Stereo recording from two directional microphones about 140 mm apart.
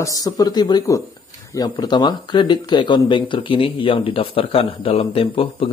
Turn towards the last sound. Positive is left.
turn(degrees=40)  # may be behind; listen again after turning